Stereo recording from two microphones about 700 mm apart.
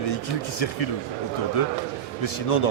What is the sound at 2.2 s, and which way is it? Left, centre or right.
Speech, left.